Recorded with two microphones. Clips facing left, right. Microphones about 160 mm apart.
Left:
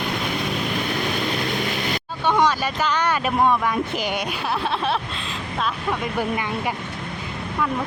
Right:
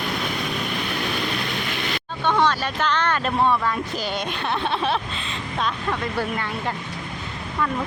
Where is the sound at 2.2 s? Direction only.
10° left (ahead or behind).